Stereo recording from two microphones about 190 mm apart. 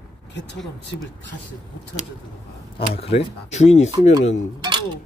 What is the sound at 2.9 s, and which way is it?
Speech, 30° left (ahead or behind).